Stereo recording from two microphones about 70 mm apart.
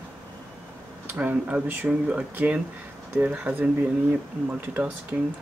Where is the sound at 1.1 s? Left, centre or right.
Centre.